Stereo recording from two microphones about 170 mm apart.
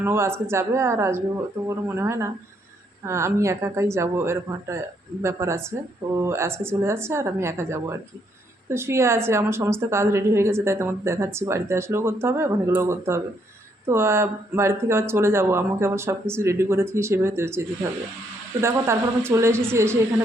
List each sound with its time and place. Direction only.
0.0 s a woman's voice: 15° right (ahead or behind)